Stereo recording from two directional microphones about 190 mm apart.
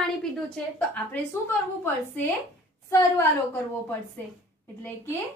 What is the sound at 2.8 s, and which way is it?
A woman's voice, 15° left (ahead or behind).